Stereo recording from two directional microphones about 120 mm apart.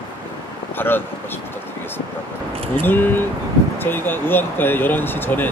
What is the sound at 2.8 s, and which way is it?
Speech, 15° left (ahead or behind).